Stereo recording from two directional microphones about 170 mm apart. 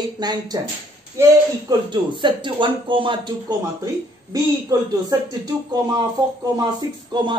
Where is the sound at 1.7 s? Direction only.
25° right (ahead or behind).